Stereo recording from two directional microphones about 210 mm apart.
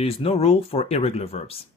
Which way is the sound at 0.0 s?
30° left (ahead or behind).